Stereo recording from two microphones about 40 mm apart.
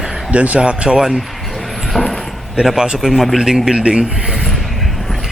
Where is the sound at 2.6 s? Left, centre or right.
Centre.